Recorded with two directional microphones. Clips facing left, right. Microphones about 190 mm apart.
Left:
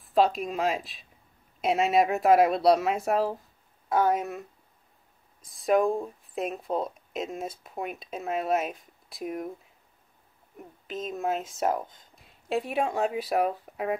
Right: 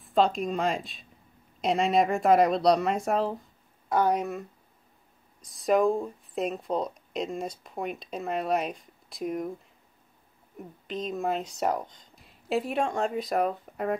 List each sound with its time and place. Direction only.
0.0 s speech: 5° left (ahead or behind)
10.6 s speech: centre (ahead or behind)